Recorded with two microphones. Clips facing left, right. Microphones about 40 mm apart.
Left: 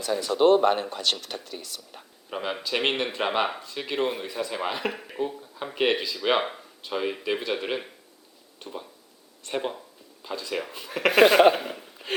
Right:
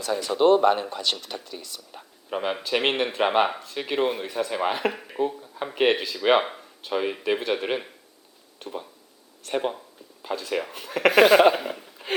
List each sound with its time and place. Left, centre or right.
0.3 s a man's voice: centre
4.3 s speech: centre
4.8 s speech: centre
10.2 s speech: centre
10.5 s speech: centre
11.1 s speech: centre
11.3 s speech: centre